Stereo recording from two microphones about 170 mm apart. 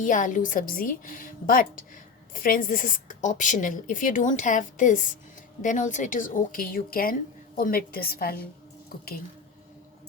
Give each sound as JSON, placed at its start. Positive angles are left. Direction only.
{"t": 0.0, "sound": "a woman's voice", "side_deg": 50}